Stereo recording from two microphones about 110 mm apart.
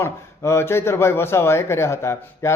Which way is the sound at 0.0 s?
25° left (ahead or behind).